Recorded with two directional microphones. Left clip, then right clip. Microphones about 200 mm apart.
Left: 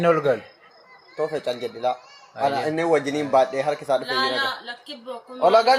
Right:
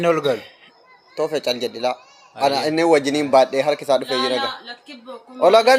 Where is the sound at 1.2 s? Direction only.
35° right (ahead or behind).